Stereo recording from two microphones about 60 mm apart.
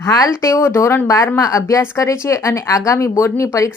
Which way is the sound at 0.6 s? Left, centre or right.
Left.